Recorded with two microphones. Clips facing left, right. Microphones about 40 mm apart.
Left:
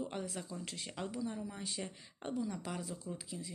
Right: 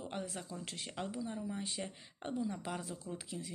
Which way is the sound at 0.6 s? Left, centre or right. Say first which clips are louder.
Even; right.